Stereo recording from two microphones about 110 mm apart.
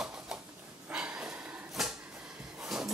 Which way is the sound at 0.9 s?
10° right (ahead or behind).